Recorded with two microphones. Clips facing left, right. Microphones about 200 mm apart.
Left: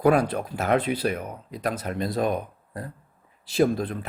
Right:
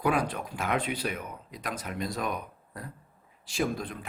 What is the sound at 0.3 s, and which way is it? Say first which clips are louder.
Speech: left 7 dB; 40° left (ahead or behind).